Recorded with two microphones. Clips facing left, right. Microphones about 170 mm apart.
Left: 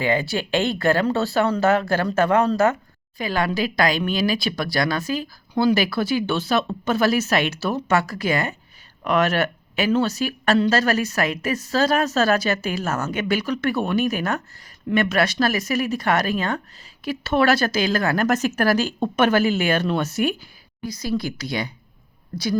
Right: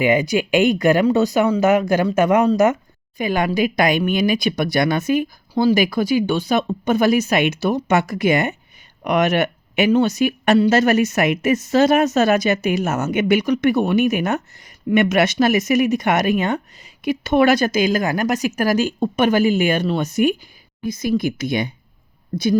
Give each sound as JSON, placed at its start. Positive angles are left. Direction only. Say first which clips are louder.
{"t": 0.0, "sound": "speech", "louder": "right 5 dB", "side_deg": -15}